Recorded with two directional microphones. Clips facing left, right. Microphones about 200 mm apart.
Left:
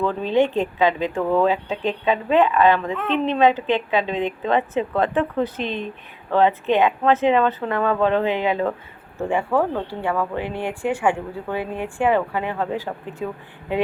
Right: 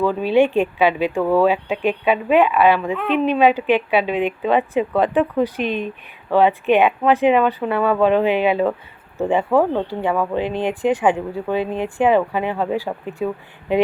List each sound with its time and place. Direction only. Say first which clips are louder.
0.0 s speech: right 3 dB; 10° right (ahead or behind)